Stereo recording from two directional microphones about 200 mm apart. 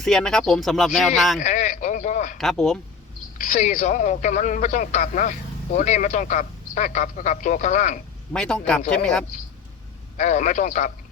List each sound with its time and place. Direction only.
0.0 s speech: 5° left (ahead or behind)
1.4 s a sound: 35° left (ahead or behind)
2.4 s speech: centre (ahead or behind)
3.3 s a man's voice: 40° left (ahead or behind)
8.3 s speech: 5° left (ahead or behind)
10.2 s a man's voice: 35° left (ahead or behind)